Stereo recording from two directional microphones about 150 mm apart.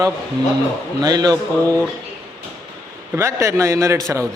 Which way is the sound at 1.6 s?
15° left (ahead or behind).